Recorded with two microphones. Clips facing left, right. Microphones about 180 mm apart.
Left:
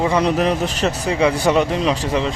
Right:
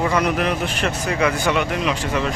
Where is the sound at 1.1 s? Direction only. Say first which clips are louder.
Left 3 dB; 20° left (ahead or behind).